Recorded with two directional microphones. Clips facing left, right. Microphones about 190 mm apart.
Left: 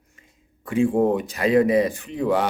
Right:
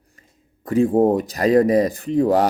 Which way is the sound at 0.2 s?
40° right (ahead or behind).